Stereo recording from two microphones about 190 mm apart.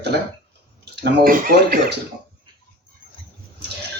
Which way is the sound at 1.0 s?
45° right (ahead or behind).